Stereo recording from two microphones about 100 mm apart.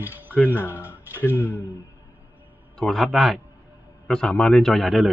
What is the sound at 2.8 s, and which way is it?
Speech, centre (ahead or behind).